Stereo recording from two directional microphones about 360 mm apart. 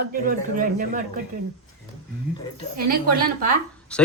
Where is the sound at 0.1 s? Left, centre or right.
Right.